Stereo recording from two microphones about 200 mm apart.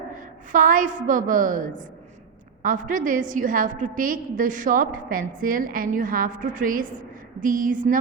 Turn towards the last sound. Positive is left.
turn(degrees=-45)  # may be behind; listen again after turning